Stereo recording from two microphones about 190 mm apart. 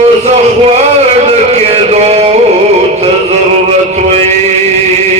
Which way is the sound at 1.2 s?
35° right (ahead or behind).